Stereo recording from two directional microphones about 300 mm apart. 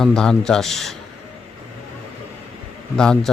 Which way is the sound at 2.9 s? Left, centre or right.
Centre.